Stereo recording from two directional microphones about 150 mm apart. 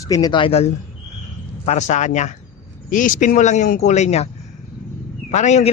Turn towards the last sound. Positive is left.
turn(degrees=50)  # may be behind; listen again after turning